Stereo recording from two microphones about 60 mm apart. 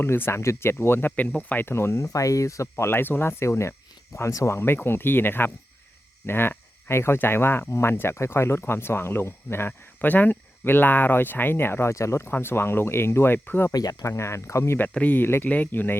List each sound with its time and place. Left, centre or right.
0.0 s speech: left
1.4 s speech: left
1.6 s speech: left
2.8 s speech: left
4.5 s speech: left
11.9 s speech: left
12.3 s speech: left
13.7 s speech: left
14.1 s speech: left
15.0 s speech: left